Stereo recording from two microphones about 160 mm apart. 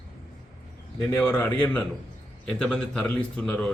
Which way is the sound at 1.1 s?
15° left (ahead or behind).